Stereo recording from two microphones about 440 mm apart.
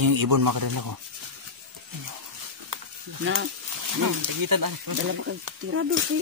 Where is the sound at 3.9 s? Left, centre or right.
Right.